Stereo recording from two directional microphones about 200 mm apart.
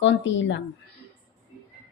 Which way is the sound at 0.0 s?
65° left (ahead or behind).